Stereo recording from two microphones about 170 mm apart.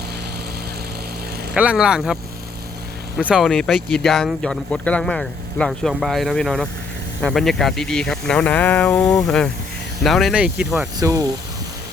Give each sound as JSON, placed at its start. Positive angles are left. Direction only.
{"t": 1.5, "sound": "speech", "side_deg": -5}
{"t": 3.2, "sound": "speech", "side_deg": -5}
{"t": 10.9, "sound": "speech", "side_deg": -20}